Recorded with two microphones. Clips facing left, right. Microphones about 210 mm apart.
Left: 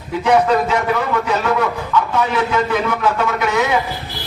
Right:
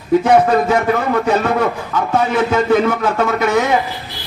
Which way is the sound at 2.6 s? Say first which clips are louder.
Right 4 dB; 45° right (ahead or behind).